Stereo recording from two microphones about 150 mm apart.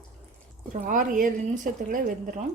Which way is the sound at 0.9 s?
65° right (ahead or behind).